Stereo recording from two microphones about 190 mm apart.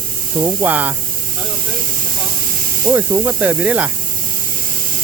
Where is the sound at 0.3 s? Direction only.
20° right (ahead or behind).